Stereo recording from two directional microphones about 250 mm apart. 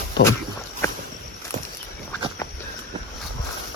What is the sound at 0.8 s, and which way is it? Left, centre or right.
Walk, centre.